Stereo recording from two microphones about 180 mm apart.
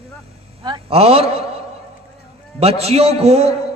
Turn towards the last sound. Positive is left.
turn(degrees=-35)  # may be behind; listen again after turning